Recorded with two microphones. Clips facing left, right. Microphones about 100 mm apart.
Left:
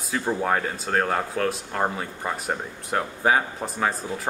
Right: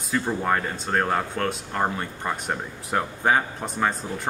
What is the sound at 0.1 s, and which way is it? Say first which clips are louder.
Speech: even; 5° left (ahead or behind).